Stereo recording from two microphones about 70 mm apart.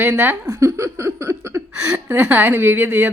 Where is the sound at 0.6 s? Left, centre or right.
Right.